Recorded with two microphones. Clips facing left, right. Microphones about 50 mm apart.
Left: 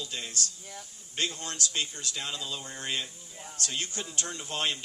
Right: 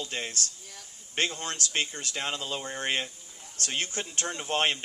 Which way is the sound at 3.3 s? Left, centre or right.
Left.